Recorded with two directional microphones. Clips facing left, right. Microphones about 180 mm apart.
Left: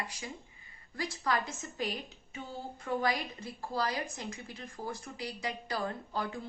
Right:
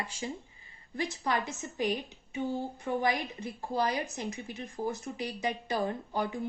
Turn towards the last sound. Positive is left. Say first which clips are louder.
# right 4 dB
turn(degrees=-20)  # may be behind; listen again after turning